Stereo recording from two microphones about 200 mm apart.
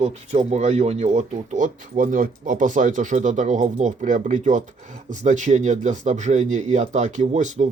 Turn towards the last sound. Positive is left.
turn(degrees=-35)  # may be behind; listen again after turning